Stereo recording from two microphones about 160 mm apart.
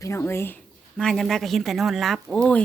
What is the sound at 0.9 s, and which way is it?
Speech, centre (ahead or behind).